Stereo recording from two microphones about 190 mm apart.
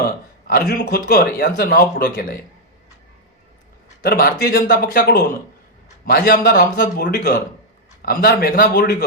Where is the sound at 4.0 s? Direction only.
50° left (ahead or behind).